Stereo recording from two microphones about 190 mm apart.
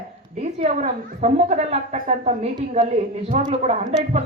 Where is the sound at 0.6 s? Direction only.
35° right (ahead or behind).